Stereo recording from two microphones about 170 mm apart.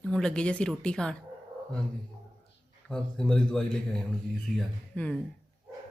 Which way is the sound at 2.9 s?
5° left (ahead or behind).